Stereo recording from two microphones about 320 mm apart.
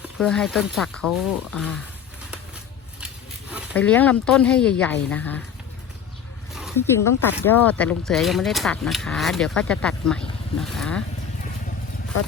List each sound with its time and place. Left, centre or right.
0.2 s speech: centre
3.5 s speech: centre
6.5 s zipper: centre
7.4 s speech: centre